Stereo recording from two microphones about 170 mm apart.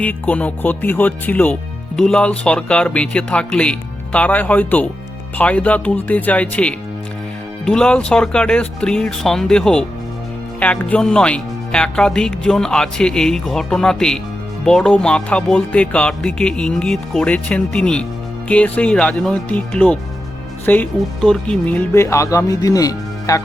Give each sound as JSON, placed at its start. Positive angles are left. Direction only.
{"t": 0.0, "sound": "speech", "side_deg": 10}